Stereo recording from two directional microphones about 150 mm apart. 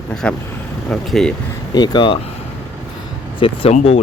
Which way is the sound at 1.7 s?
30° left (ahead or behind).